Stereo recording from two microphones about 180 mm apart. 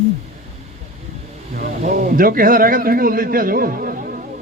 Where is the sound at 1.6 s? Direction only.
50° right (ahead or behind).